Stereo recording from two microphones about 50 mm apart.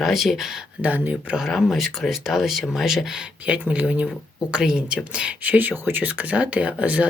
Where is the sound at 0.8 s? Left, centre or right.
Right.